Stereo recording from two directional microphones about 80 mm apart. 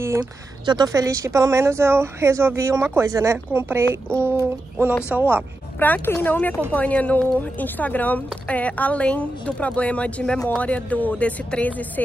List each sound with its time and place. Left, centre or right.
0.7 s speech: right
0.9 s speech: right
3.5 s a sound: right
6.0 s a woman's voice: left